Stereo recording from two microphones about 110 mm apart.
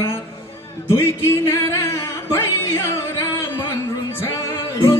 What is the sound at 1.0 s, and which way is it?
Music, 25° left (ahead or behind).